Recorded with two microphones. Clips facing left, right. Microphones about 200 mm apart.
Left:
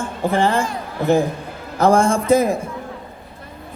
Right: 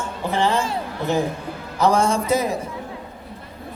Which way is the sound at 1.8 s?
50° left (ahead or behind).